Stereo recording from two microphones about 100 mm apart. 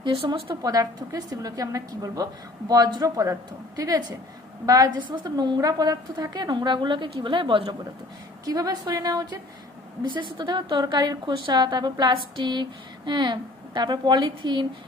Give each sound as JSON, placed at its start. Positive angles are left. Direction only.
{"t": 0.0, "sound": "a woman's voice", "side_deg": -50}
{"t": 0.6, "sound": "a woman's voice", "side_deg": -40}
{"t": 5.0, "sound": "a woman's voice", "side_deg": -50}
{"t": 8.4, "sound": "a woman's voice", "side_deg": -40}
{"t": 10.0, "sound": "a woman's voice", "side_deg": -50}